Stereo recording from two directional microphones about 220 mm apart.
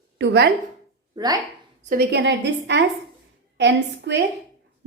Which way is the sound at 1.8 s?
40° right (ahead or behind).